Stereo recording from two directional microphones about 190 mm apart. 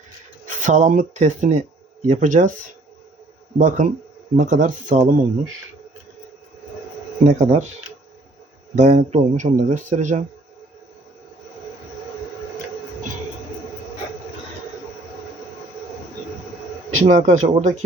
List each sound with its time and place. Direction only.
0.4 s speech: 40° right (ahead or behind)
3.6 s speech: 40° right (ahead or behind)
7.3 s speech: 40° right (ahead or behind)
8.7 s speech: 40° right (ahead or behind)
17.0 s speech: 40° right (ahead or behind)